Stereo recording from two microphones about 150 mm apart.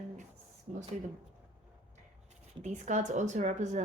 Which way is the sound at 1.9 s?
50° right (ahead or behind).